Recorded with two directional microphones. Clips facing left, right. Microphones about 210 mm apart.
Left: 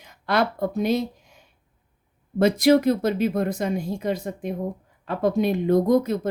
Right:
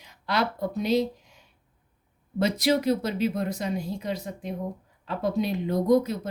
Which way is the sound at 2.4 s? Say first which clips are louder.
Left 6 dB; 50° left (ahead or behind).